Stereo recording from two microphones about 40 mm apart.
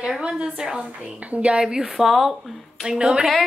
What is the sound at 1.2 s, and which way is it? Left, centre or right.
Speech, right.